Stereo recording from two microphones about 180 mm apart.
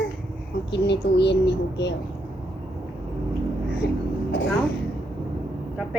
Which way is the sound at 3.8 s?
65° left (ahead or behind).